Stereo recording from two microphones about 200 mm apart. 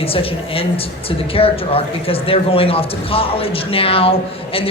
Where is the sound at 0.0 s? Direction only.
30° left (ahead or behind).